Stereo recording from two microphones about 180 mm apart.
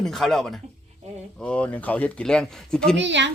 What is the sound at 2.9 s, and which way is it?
Speech, 80° right.